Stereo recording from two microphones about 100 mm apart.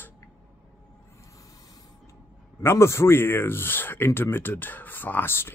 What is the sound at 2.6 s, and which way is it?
Speech, 25° left (ahead or behind).